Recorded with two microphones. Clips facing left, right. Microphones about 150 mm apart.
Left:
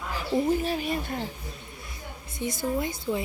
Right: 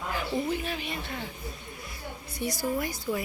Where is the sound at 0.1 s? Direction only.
35° left (ahead or behind).